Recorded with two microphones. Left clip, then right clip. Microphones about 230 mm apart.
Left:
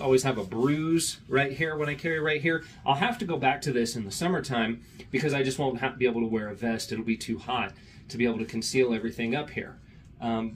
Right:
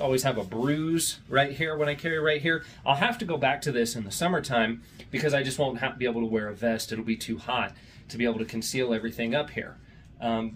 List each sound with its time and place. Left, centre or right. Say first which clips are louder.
0.0 s speech: left 1 dB; centre